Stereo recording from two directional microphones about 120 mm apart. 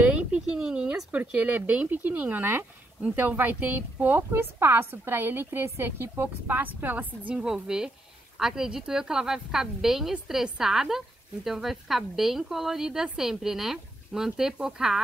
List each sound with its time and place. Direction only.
0.0 s a woman's voice: 10° right (ahead or behind)